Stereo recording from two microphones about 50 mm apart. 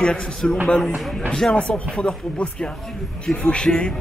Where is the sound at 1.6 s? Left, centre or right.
Left.